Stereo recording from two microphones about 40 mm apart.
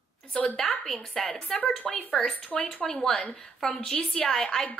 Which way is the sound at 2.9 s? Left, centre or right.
Centre.